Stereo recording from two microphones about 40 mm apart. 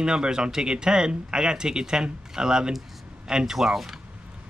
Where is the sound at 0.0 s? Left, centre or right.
Centre.